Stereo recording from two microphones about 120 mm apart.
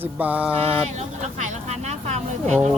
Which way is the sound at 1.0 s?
70° right (ahead or behind).